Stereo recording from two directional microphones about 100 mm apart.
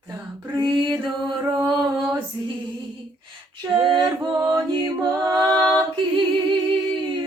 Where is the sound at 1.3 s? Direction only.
50° right (ahead or behind).